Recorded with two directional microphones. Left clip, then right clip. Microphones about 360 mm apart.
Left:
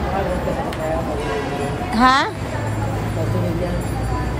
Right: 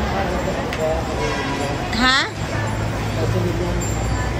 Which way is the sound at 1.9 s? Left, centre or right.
Centre.